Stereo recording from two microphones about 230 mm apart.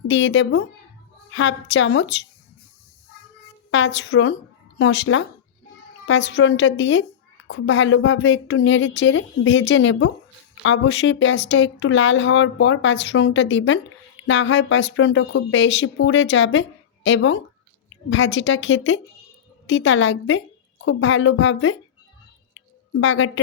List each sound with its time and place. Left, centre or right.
0.1 s a woman's voice: left
3.7 s a woman's voice: left
23.0 s speech: left